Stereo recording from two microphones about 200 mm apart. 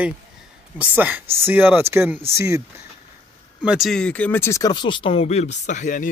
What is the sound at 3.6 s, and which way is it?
Speech, centre (ahead or behind).